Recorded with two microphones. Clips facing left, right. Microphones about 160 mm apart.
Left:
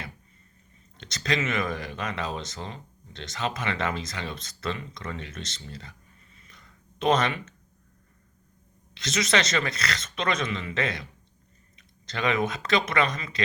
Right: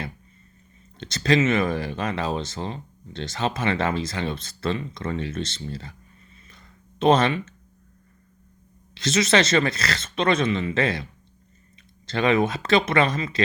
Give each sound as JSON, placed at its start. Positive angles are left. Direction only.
{"t": 0.9, "sound": "speech", "side_deg": -30}
{"t": 6.5, "sound": "a sound", "side_deg": -30}
{"t": 9.0, "sound": "speech", "side_deg": -30}